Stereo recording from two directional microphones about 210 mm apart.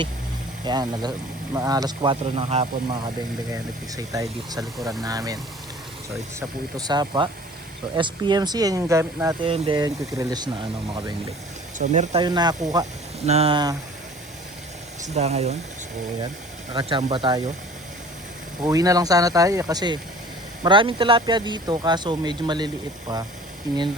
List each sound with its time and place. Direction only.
0.6 s speech: 20° right (ahead or behind)
6.7 s speech: 20° right (ahead or behind)
11.8 s speech: 35° right (ahead or behind)
12.2 s speech: 20° right (ahead or behind)
13.2 s speech: 30° right (ahead or behind)
15.0 s speech: 30° right (ahead or behind)
16.7 s speech: 20° right (ahead or behind)
18.6 s speech: 15° right (ahead or behind)